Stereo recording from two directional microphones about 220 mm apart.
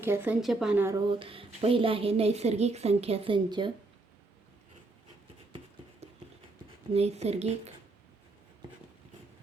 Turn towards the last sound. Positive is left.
turn(degrees=-30)  # may be behind; listen again after turning